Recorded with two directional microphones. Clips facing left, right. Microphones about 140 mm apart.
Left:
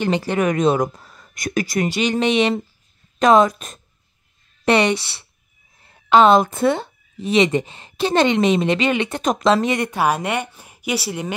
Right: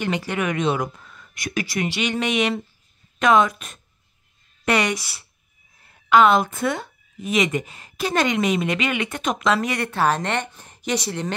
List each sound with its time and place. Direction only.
0.0 s a woman's voice: 30° left (ahead or behind)
5.8 s a sound: 30° left (ahead or behind)
6.5 s a woman's voice: 30° left (ahead or behind); by 11.3 s 10° left (ahead or behind)